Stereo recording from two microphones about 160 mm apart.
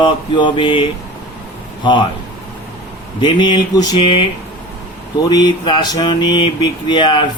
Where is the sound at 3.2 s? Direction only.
30° left (ahead or behind).